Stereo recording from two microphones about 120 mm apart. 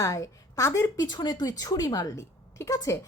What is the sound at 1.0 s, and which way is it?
Speech, 35° left (ahead or behind).